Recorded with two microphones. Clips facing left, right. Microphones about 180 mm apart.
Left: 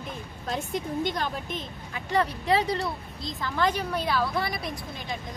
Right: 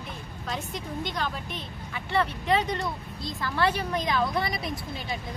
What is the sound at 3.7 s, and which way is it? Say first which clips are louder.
Speech: even; 10° left (ahead or behind).